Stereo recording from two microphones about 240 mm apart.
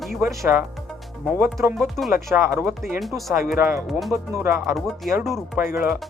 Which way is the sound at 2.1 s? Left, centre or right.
Centre.